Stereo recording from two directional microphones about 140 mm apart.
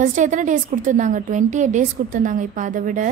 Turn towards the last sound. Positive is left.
turn(degrees=-65)  # may be behind; listen again after turning